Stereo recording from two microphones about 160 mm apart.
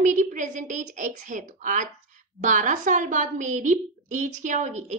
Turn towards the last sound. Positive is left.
turn(degrees=-45)  # may be behind; listen again after turning